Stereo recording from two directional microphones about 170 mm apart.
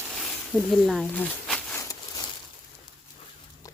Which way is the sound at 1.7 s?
20° left (ahead or behind).